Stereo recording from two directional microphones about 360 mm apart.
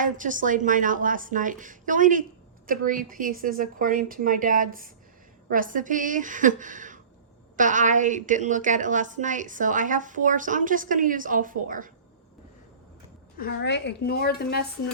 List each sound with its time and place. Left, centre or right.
0.0 s a woman's voice: right
13.4 s a woman's voice: left